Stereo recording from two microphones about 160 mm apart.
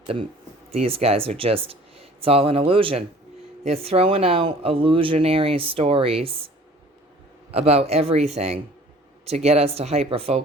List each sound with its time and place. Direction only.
0.0 s speech: 35° right (ahead or behind)
7.5 s speech: 40° right (ahead or behind)